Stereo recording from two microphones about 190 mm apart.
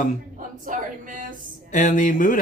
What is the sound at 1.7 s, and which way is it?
Speech, 40° left (ahead or behind).